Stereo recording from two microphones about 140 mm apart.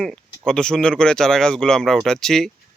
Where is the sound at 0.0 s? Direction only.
5° left (ahead or behind).